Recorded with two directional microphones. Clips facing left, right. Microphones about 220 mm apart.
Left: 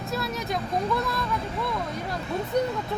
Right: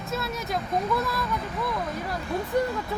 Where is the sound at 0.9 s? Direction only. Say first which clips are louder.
Even; centre (ahead or behind).